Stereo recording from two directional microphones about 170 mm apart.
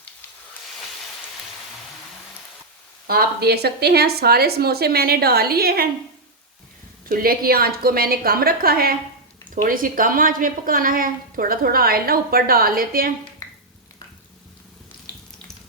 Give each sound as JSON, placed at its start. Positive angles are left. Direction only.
{"t": 3.1, "sound": "a woman's voice", "side_deg": -65}
{"t": 7.1, "sound": "a woman's voice", "side_deg": -60}